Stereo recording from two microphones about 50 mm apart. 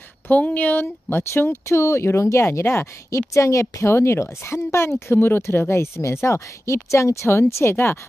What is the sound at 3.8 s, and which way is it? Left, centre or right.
Speech, left.